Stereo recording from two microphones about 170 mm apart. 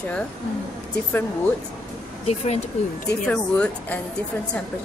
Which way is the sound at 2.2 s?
40° left (ahead or behind).